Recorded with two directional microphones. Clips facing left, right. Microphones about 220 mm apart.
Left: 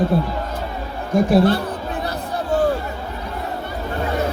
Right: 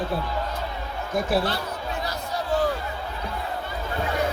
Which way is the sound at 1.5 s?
55° left (ahead or behind).